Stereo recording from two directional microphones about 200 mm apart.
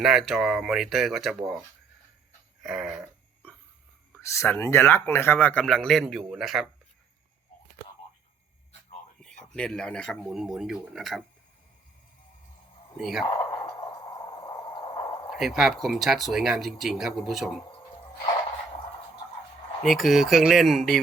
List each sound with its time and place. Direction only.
0.0 s speech: centre (ahead or behind)
2.6 s a sound: centre (ahead or behind)
4.1 s speech: 15° left (ahead or behind); by 6.7 s centre (ahead or behind)
9.6 s speech: 5° left (ahead or behind)
13.0 s speech: centre (ahead or behind)
13.3 s a sound: 20° left (ahead or behind)
15.3 s speech: centre (ahead or behind)
19.8 s speech: centre (ahead or behind)